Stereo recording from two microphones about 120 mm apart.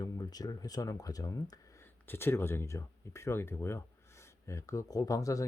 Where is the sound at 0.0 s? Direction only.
35° left (ahead or behind).